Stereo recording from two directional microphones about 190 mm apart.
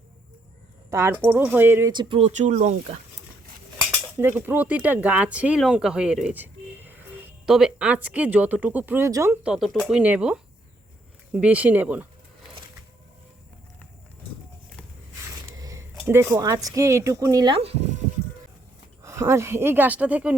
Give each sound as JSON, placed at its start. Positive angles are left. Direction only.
{"t": 0.9, "sound": "speech", "side_deg": -15}
{"t": 1.9, "sound": "speech", "side_deg": -25}
{"t": 3.8, "sound": "cutlery", "side_deg": -10}
{"t": 7.4, "sound": "speech", "side_deg": -5}
{"t": 15.5, "sound": "a sound", "side_deg": -15}
{"t": 16.0, "sound": "speech", "side_deg": -10}
{"t": 19.0, "sound": "speech", "side_deg": -15}